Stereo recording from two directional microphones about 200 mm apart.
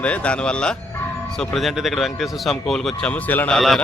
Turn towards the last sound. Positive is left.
turn(degrees=0)  # may be behind; listen again after turning